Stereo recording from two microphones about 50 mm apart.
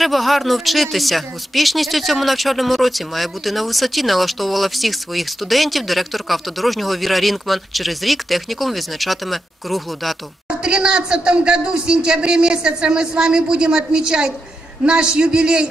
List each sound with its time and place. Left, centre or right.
0.0 s speech: centre
10.6 s a man's voice: centre